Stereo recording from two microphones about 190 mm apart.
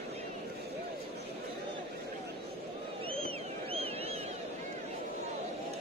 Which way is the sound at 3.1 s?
30° right (ahead or behind).